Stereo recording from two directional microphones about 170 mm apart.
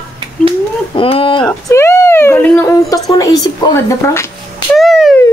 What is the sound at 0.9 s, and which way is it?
Speech, 30° left (ahead or behind).